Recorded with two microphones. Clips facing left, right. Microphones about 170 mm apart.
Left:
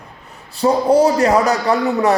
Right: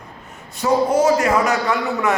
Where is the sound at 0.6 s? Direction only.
35° left (ahead or behind).